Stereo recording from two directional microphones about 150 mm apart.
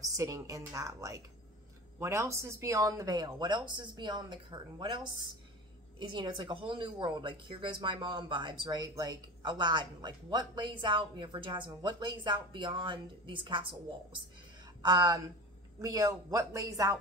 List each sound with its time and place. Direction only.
0.2 s a woman's voice: 20° right (ahead or behind)